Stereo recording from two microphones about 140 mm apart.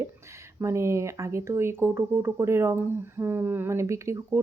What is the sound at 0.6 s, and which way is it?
A woman's voice, 20° right (ahead or behind).